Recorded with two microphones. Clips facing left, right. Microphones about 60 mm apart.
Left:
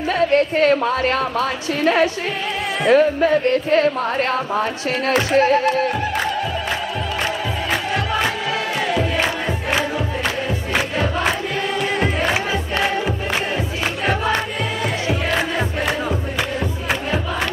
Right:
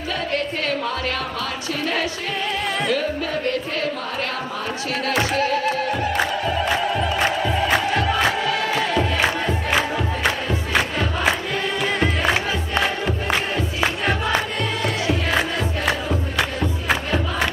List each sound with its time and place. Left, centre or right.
0.3 s music: left
10.7 s crowd: centre
15.3 s crowd: centre